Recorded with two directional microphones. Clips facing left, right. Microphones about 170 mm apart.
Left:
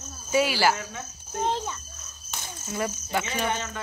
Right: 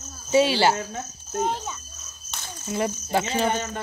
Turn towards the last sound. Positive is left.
turn(degrees=-30)  # may be behind; listen again after turning